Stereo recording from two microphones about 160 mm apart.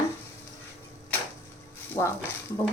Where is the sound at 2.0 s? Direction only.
20° left (ahead or behind).